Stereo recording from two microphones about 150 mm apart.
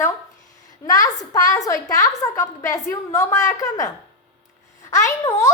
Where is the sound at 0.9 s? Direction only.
25° left (ahead or behind).